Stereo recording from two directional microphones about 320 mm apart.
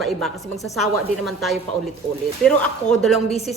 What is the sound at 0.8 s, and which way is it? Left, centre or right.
A woman's voice, centre.